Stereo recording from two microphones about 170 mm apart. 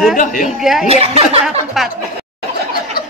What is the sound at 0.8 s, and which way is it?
Speech, 35° right (ahead or behind).